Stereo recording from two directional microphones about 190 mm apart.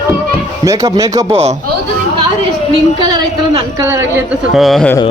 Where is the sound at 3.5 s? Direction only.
20° right (ahead or behind).